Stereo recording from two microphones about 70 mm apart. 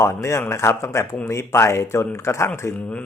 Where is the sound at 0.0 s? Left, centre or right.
Left.